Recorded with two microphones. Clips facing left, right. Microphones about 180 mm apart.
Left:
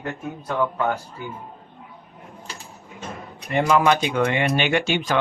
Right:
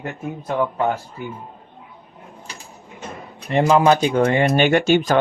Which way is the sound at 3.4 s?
30° right (ahead or behind).